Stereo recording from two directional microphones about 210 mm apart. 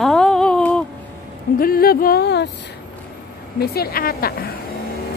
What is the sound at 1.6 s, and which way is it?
Speech, 45° left (ahead or behind).